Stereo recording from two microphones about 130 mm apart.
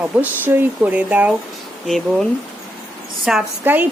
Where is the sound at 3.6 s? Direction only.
15° right (ahead or behind).